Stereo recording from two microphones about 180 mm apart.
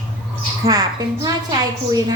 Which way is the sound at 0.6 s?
20° right (ahead or behind).